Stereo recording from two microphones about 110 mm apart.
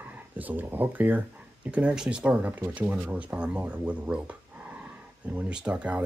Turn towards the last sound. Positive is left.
turn(degrees=-10)  # may be behind; listen again after turning